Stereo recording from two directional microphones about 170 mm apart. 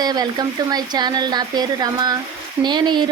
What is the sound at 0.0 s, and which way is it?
Speech, 25° right (ahead or behind).